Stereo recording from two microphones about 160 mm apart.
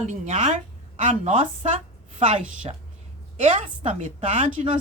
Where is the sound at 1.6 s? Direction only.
45° right (ahead or behind).